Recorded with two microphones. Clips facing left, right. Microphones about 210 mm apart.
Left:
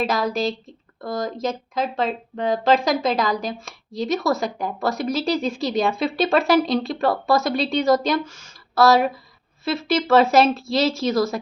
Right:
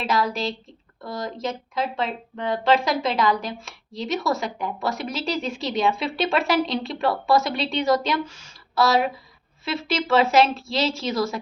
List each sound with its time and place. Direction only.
0.0 s a woman's voice: 40° left (ahead or behind)